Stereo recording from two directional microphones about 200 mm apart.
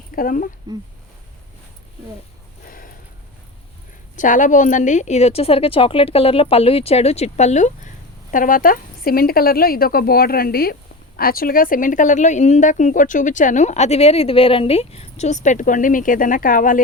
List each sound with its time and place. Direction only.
0.2 s speech: 45° left (ahead or behind)
2.6 s a sound: 45° left (ahead or behind)
4.2 s speech: 40° left (ahead or behind)